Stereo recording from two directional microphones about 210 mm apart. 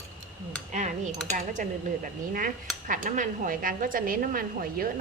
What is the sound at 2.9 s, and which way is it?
A woman's voice, 35° right (ahead or behind).